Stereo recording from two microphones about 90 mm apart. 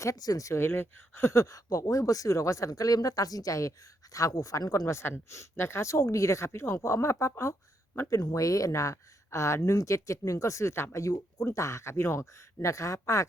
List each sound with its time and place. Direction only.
0.0 s speech: 40° left (ahead or behind)
4.9 s speech: 30° left (ahead or behind)